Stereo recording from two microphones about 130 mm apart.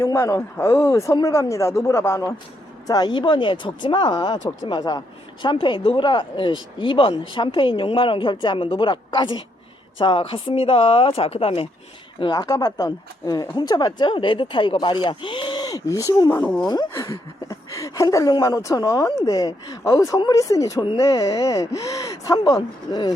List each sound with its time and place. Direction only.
0.0 s a woman's voice: 20° left (ahead or behind); by 11.7 s 45° left (ahead or behind)
12.2 s speech: 35° left (ahead or behind)
16.4 s speech: 10° left (ahead or behind)
16.6 s speech: 30° left (ahead or behind)